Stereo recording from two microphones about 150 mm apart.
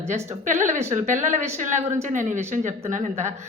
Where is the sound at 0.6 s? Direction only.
50° right (ahead or behind).